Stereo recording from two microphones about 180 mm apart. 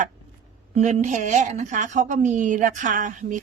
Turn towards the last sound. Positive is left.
turn(degrees=-45)  # may be behind; listen again after turning